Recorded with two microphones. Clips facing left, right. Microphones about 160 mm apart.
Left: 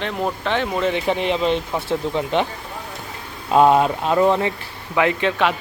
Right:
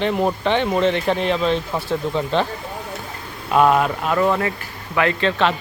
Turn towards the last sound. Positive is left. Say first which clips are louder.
# even
turn(degrees=10)  # may be behind; listen again after turning